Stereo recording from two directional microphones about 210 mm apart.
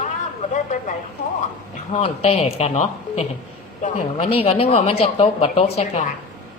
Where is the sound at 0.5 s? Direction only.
35° left (ahead or behind).